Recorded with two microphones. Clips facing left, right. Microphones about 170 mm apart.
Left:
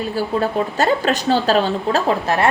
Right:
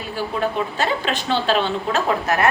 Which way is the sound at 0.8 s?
40° left (ahead or behind).